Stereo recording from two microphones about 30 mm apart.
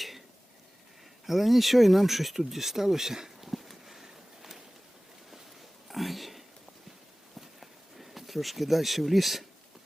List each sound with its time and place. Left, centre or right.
1.3 s speech: centre
3.5 s walk: centre
5.9 s a sound: centre